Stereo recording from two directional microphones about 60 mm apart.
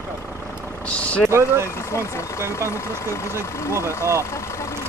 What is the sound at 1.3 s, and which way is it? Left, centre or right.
Speech, right.